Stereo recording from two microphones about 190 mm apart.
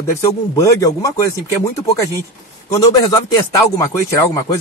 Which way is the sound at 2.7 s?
15° left (ahead or behind).